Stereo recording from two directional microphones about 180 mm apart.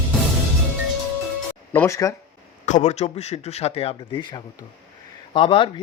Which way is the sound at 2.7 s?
40° left (ahead or behind).